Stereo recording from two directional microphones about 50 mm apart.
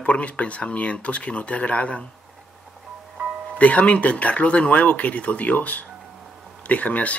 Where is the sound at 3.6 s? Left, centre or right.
Left.